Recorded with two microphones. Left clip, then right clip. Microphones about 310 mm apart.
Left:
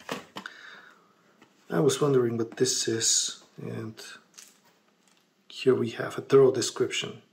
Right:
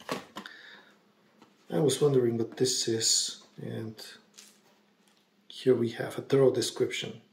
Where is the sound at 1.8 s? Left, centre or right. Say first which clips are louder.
Left 2 dB; left.